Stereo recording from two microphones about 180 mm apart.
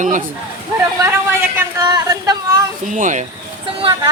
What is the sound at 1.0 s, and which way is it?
Speech, 15° right (ahead or behind).